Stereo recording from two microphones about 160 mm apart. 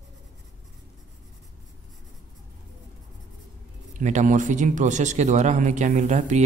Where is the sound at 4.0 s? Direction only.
50° right (ahead or behind).